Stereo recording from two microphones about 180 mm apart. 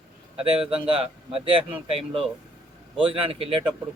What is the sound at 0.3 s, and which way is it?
Speech, 30° right (ahead or behind).